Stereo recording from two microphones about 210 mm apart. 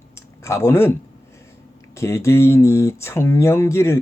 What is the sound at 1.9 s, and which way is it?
Speech, 15° left (ahead or behind).